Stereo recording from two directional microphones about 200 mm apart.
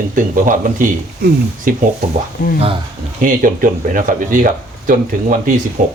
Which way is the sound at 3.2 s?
45° right (ahead or behind).